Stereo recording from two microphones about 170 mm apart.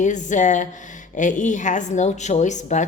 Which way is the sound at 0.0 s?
45° left (ahead or behind).